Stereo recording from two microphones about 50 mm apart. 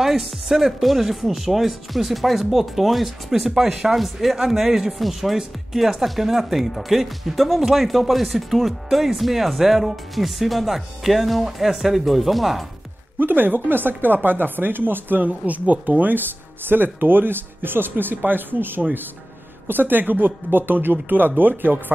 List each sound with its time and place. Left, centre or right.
0.0 s speech: centre
13.2 s speech: right